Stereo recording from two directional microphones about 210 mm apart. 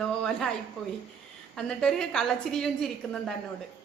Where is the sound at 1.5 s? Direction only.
5° left (ahead or behind).